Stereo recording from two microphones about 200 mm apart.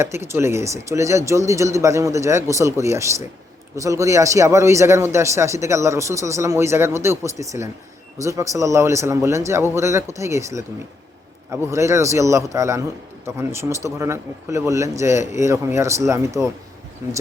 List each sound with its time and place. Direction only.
0.0 s speech: 15° right (ahead or behind)